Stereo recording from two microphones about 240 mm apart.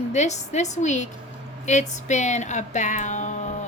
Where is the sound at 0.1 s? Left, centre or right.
Left.